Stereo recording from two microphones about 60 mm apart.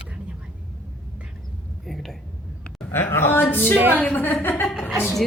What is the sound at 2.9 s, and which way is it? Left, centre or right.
A woman's voice, left.